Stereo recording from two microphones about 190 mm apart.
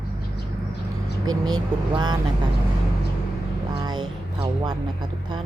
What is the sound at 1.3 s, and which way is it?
Speech, 20° right (ahead or behind).